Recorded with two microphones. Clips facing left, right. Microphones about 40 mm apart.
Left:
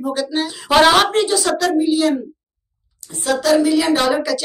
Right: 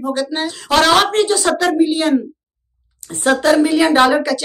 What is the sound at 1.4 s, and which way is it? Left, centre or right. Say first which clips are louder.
Speech: right 2 dB; centre.